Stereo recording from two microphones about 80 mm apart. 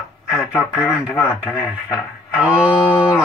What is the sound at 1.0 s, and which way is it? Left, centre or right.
Speech, left.